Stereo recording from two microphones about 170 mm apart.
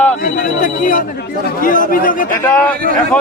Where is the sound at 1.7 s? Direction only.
55° left (ahead or behind).